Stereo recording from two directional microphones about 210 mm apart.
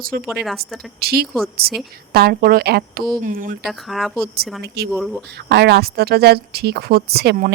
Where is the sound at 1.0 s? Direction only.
50° right (ahead or behind).